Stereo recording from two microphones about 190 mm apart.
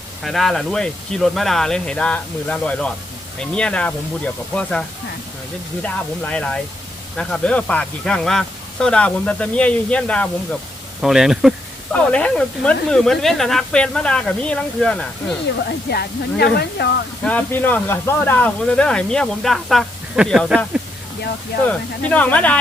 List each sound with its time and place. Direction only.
0.2 s speech: centre (ahead or behind)
15.9 s speech: 55° left (ahead or behind)
17.2 s speech: 10° left (ahead or behind)
21.7 s speech: 10° left (ahead or behind)